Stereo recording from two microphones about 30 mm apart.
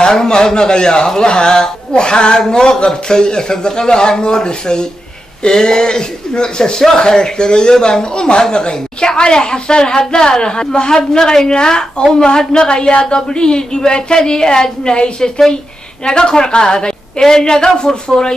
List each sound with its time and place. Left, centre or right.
0.1 s speech: left